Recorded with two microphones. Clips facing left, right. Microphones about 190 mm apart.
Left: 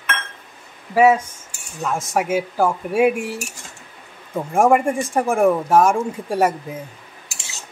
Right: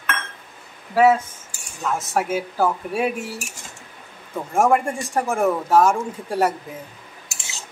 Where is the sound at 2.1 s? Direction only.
15° left (ahead or behind).